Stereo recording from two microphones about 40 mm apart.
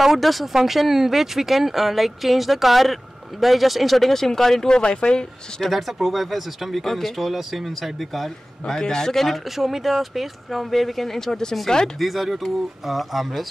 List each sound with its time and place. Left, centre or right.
0.0 s speech: centre
4.6 s speech: left
5.7 s speech: centre
8.7 s a man's voice: centre
9.6 s speech: centre
12.0 s speech: centre